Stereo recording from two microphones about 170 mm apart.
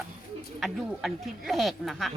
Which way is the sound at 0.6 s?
Centre (ahead or behind).